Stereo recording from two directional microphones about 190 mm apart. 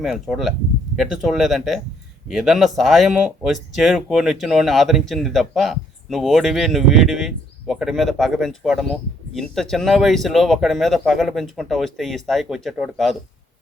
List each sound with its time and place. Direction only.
0.0 s speech: centre (ahead or behind)